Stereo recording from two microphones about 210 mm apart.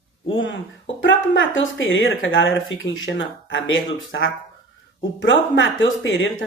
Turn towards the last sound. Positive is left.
turn(degrees=65)  # may be behind; listen again after turning